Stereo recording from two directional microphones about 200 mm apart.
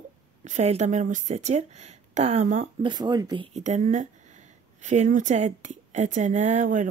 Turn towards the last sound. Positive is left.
turn(degrees=-40)  # may be behind; listen again after turning